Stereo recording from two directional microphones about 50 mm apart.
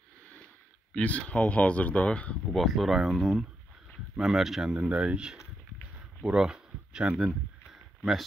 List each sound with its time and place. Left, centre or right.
0.9 s speech: left
2.5 s speech: centre
4.6 s speech: right
6.2 s a sound: centre